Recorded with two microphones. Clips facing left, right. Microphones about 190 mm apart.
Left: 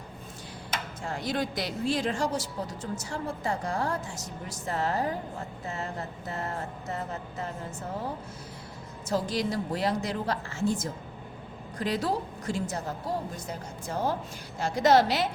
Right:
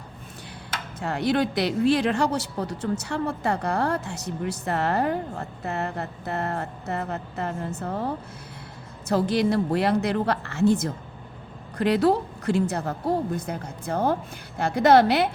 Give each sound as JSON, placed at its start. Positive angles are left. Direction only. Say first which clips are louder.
{"t": 1.0, "sound": "a woman's voice", "louder": "right 8 dB", "side_deg": -65}